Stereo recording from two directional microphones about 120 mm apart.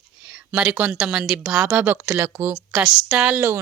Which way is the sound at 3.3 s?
20° right (ahead or behind).